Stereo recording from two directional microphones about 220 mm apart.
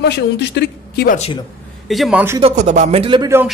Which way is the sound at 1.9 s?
Centre (ahead or behind).